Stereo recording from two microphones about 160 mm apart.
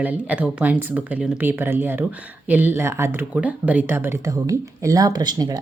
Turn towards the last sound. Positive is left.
turn(degrees=-25)  # may be behind; listen again after turning